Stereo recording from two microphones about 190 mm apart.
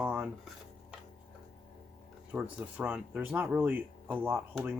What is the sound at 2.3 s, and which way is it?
Speech, 5° right (ahead or behind).